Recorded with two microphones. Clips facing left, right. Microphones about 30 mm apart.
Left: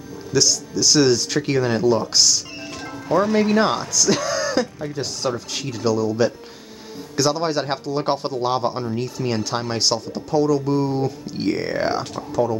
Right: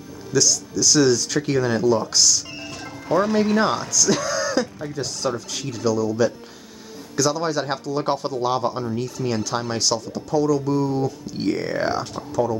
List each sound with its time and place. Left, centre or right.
0.3 s speech: left
2.8 s music: centre
3.4 s speech: left
3.9 s a sound: left
4.9 s speech: left
9.8 s speech: left